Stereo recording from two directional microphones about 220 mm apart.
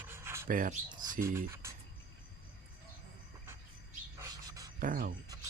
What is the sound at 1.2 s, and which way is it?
Speech, 10° right (ahead or behind).